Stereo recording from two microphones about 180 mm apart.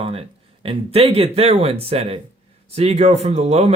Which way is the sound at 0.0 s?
35° right (ahead or behind).